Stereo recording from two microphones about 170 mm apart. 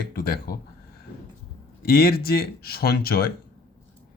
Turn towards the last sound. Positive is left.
turn(degrees=65)  # may be behind; listen again after turning